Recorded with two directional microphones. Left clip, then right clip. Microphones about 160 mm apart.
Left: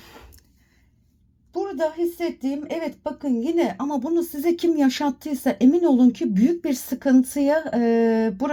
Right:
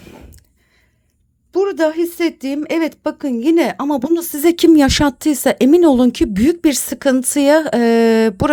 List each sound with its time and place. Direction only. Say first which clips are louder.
1.5 s a woman's voice: right 9 dB; 55° right (ahead or behind)